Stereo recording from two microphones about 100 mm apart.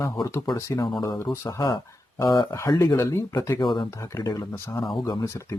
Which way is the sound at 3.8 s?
30° left (ahead or behind).